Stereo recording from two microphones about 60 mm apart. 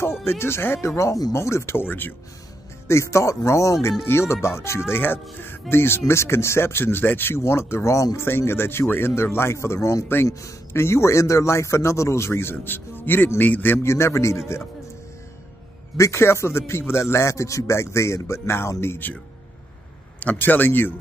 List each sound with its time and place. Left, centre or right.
0.0 s a man's voice: left
2.9 s a man's voice: left
4.0 s a man's voice: left
4.9 s a man's voice: left
8.2 s a man's voice: left
13.8 s a man's voice: left
16.0 s a man's voice: left
20.2 s speech: left